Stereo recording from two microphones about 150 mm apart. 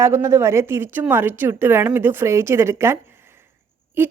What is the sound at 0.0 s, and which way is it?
A woman's voice, 20° right (ahead or behind).